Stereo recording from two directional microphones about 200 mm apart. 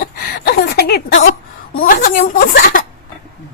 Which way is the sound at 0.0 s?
50° left (ahead or behind).